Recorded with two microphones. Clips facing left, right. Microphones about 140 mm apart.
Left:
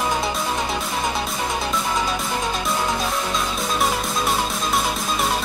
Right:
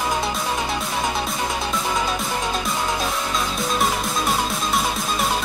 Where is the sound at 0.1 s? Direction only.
Centre (ahead or behind).